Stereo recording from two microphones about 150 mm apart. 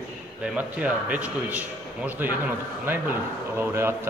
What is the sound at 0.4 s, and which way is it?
A man's voice, 10° right (ahead or behind).